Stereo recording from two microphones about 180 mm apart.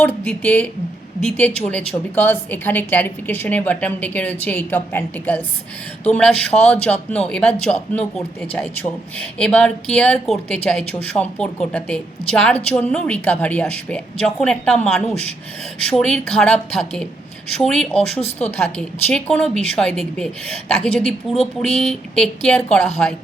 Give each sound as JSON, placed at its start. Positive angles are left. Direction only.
{"t": 0.3, "sound": "a woman's voice", "side_deg": 5}
{"t": 18.2, "sound": "speech", "side_deg": 35}
{"t": 18.5, "sound": "speech", "side_deg": 10}
{"t": 21.2, "sound": "speech", "side_deg": 30}
{"t": 21.8, "sound": "speech", "side_deg": 5}